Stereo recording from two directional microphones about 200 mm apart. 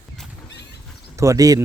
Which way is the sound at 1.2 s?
15° right (ahead or behind).